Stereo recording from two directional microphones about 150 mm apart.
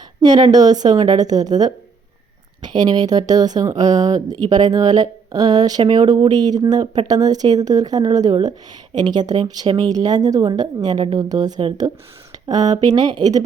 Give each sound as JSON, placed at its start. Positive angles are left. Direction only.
{"t": 0.2, "sound": "speech", "side_deg": -25}